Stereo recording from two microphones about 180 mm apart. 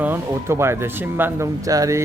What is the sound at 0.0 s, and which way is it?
A man's voice, 10° right (ahead or behind).